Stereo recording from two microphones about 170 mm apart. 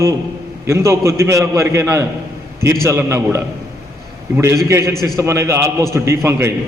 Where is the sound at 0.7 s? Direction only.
15° right (ahead or behind).